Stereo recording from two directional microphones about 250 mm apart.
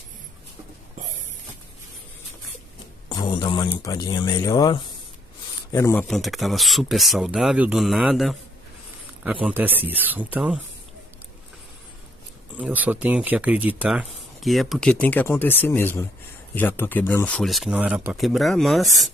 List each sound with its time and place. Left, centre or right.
3.1 s speech: centre
12.5 s speech: centre